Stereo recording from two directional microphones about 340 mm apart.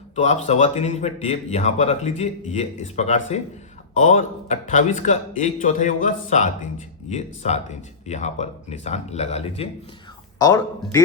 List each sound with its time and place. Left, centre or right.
0.2 s speech: centre